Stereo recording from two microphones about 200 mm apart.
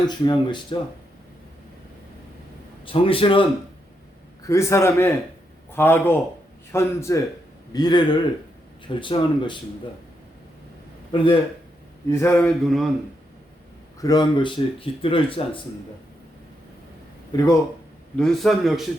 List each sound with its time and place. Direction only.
0.1 s speech: 20° left (ahead or behind)
2.8 s speech: 25° left (ahead or behind)
4.4 s a sound: 15° left (ahead or behind)
7.7 s speech: 20° left (ahead or behind)
11.1 s speech: 25° left (ahead or behind)
12.1 s a sound: 10° left (ahead or behind)
14.0 s speech: 20° left (ahead or behind)
17.3 s a sound: 20° left (ahead or behind)
18.2 s a man's voice: centre (ahead or behind)